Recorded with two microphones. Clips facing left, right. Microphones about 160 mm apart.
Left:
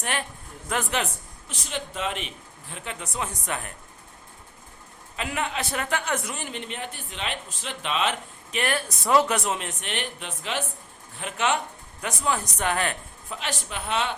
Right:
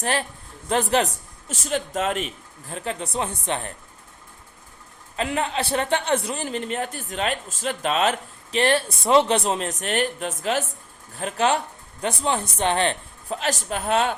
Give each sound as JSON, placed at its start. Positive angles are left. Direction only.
{"t": 0.0, "sound": "a man's voice", "side_deg": -35}
{"t": 5.1, "sound": "a man's voice", "side_deg": -35}
{"t": 8.5, "sound": "a man's voice", "side_deg": -30}
{"t": 13.4, "sound": "a man's voice", "side_deg": -40}